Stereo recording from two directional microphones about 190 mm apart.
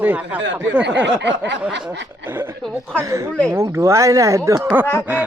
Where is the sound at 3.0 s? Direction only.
15° right (ahead or behind).